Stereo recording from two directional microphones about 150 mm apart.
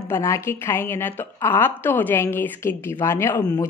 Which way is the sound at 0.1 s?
20° left (ahead or behind).